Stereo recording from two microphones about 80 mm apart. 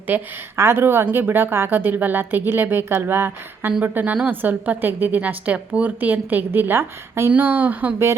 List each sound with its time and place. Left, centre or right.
0.1 s a woman's voice: right